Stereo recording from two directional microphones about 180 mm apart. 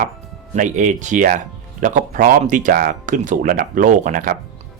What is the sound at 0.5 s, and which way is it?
Speech, 45° right (ahead or behind).